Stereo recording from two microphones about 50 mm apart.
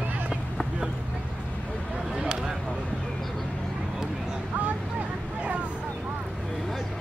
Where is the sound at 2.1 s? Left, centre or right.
Centre.